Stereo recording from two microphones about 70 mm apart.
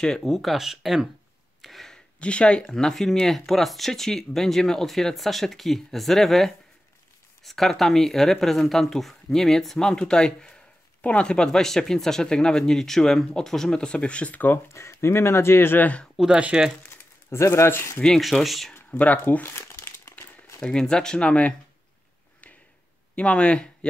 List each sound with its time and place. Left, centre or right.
0.0 s speech: centre
1.6 s a sound: centre
2.1 s speech: centre
14.7 s speech: left
16.3 s speech: centre
16.8 s speech: left
18.0 s speech: centre
18.9 s speech: left
19.5 s crumpling: left
20.6 s speech: centre
23.1 s speech: centre